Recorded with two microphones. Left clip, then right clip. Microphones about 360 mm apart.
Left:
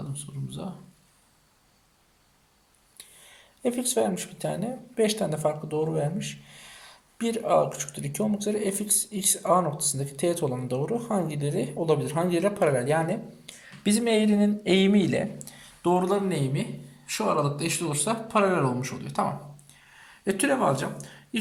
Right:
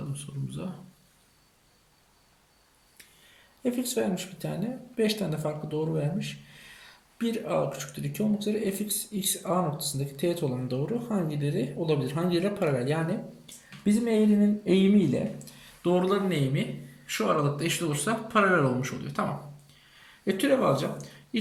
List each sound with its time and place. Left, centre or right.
3.6 s speech: centre
13.8 s speech: left
20.2 s speech: centre